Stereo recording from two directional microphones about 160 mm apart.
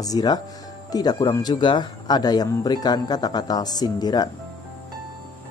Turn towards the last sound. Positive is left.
turn(degrees=25)  # may be behind; listen again after turning